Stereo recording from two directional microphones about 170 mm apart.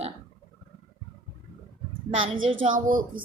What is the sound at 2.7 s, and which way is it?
Speech, 50° right (ahead or behind).